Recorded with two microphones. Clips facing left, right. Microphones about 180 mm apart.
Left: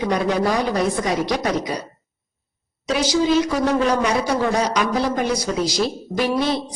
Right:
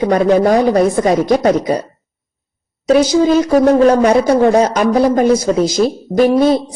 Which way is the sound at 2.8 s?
50° right (ahead or behind).